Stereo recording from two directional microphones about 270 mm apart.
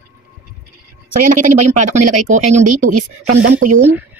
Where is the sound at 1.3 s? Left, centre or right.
Right.